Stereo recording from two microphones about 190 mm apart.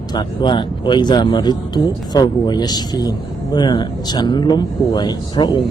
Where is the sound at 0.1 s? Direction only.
20° left (ahead or behind).